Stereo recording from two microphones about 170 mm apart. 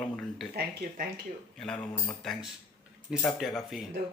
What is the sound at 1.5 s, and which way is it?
Speech, 5° left (ahead or behind).